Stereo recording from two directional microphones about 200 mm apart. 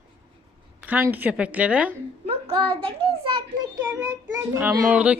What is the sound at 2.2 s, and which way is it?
A child's voice, 30° right (ahead or behind).